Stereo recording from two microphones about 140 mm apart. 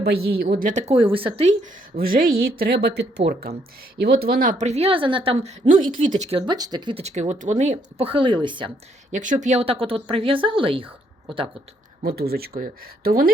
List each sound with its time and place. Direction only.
0.2 s a woman's voice: 90° right; by 1.5 s 45° right (ahead or behind)
2.0 s speech: 90° right
4.0 s speech: 90° right
4.6 s a woman's voice: 50° right (ahead or behind)
6.1 s a woman's voice: 55° right (ahead or behind)
6.3 s a woman's voice: 35° right (ahead or behind)
7.0 s a woman's voice: 55° right (ahead or behind)
8.0 s a woman's voice: 35° right (ahead or behind)
9.1 s a woman's voice: 65° right (ahead or behind)
9.8 s a woman's voice: 40° right (ahead or behind)
12.0 s speech: 90° right